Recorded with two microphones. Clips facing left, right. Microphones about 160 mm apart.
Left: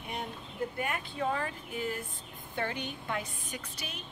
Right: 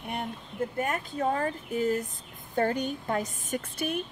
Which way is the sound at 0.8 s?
40° right (ahead or behind).